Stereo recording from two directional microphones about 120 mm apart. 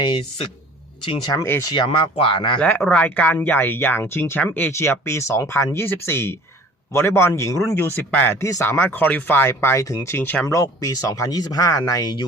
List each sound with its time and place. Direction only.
1.2 s speech: 35° left (ahead or behind)
1.5 s speech: 20° left (ahead or behind)
1.7 s speech: 45° left (ahead or behind)
2.6 s speech: 15° left (ahead or behind)
10.4 s speech: 30° left (ahead or behind)